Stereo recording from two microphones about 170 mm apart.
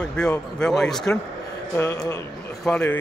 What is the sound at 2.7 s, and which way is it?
Speech, 5° left (ahead or behind).